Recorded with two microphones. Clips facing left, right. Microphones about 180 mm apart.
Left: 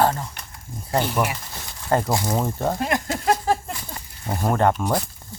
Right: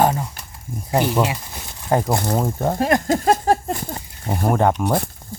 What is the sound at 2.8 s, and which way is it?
Speech, 40° right (ahead or behind).